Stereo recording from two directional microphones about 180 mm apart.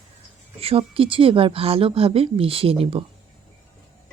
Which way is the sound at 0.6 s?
30° right (ahead or behind).